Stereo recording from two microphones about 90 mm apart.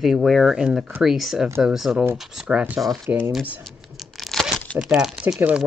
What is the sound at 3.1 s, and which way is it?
Speech, 25° right (ahead or behind).